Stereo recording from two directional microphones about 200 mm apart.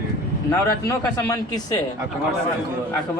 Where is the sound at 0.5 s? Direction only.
15° left (ahead or behind).